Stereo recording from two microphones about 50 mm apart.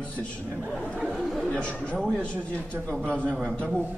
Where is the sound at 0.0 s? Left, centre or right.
Left.